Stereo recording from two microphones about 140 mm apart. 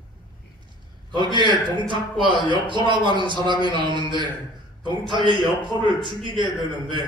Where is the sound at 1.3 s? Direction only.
35° right (ahead or behind).